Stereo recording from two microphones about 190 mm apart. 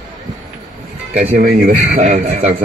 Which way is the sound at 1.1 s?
45° right (ahead or behind).